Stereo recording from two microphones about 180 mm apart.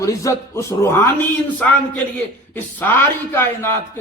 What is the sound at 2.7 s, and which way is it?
A man's voice, 10° left (ahead or behind).